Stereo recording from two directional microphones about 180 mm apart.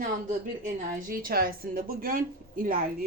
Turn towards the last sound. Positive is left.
turn(degrees=-55)  # may be behind; listen again after turning